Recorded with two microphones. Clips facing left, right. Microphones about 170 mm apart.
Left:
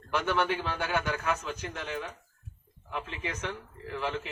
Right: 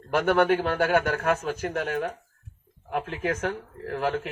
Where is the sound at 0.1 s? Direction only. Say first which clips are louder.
Right 8 dB; 50° right (ahead or behind).